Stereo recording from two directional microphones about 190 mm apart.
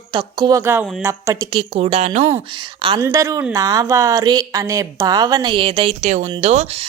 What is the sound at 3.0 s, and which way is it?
A woman's voice, 15° right (ahead or behind).